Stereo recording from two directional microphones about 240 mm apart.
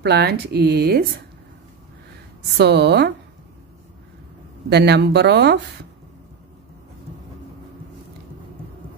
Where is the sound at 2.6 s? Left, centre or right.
Right.